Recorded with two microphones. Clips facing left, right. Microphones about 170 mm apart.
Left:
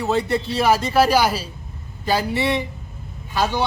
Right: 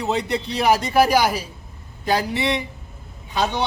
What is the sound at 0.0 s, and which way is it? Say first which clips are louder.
A man's voice: left 2 dB; 20° right (ahead or behind).